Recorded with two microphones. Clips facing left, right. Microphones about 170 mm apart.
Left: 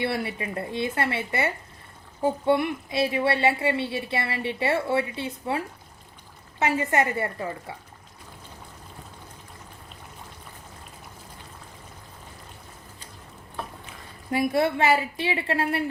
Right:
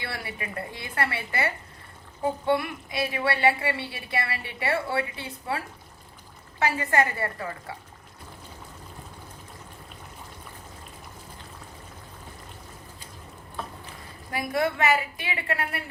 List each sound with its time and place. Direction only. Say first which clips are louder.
0.0 s a woman's voice: left 8 dB; 25° left (ahead or behind)
14.3 s a woman's voice: left 4 dB; 25° left (ahead or behind)